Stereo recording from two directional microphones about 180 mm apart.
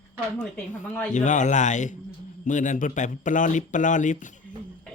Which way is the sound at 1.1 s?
45° left (ahead or behind).